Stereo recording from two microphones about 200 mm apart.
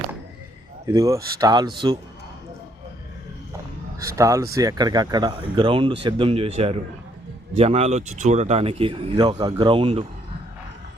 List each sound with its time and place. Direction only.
0.9 s speech: 15° right (ahead or behind)
4.0 s speech: 15° right (ahead or behind)
7.5 s speech: 30° right (ahead or behind)